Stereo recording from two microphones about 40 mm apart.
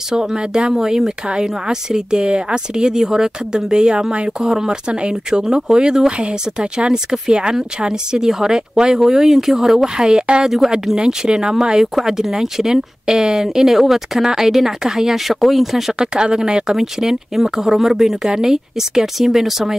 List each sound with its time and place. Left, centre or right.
0.1 s speech: centre
10.0 s speech: right
10.4 s speech: centre
16.0 s speech: centre
16.7 s speech: centre